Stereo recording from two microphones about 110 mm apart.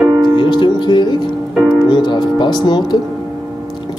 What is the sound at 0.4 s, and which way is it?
Music, 45° left (ahead or behind).